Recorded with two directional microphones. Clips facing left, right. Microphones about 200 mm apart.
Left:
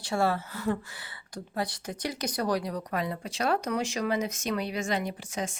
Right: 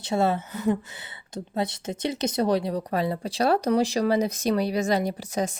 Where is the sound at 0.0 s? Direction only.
20° right (ahead or behind).